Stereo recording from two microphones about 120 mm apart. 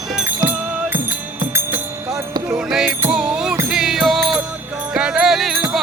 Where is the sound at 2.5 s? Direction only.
5° right (ahead or behind).